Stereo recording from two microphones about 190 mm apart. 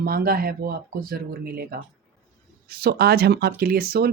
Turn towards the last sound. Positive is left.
turn(degrees=-55)  # may be behind; listen again after turning